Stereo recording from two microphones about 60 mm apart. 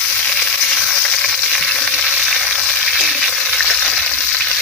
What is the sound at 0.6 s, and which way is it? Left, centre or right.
Frying, centre.